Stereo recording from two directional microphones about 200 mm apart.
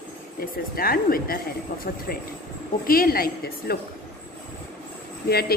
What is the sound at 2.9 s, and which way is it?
Speech, 45° left (ahead or behind).